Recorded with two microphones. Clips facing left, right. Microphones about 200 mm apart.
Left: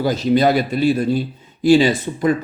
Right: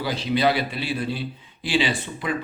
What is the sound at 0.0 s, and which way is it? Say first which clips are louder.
A man's voice: left 7 dB; 45° left (ahead or behind).